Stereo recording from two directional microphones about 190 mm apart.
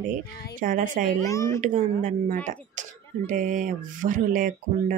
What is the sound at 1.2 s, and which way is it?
Speech, 15° left (ahead or behind).